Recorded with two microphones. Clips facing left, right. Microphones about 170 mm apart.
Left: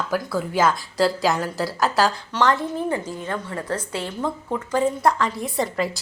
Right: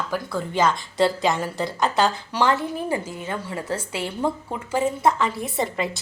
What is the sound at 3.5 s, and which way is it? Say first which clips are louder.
Speech: even; 25° right (ahead or behind).